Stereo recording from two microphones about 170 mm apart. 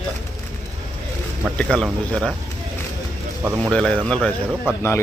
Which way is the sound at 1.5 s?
5° left (ahead or behind).